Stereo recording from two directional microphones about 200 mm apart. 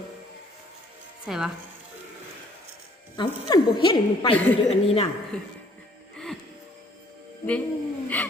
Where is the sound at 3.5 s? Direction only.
20° left (ahead or behind).